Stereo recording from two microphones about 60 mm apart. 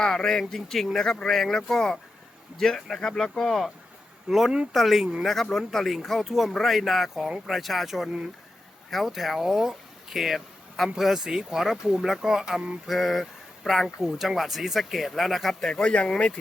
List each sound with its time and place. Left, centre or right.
0.0 s speech: centre
15.7 s speech: centre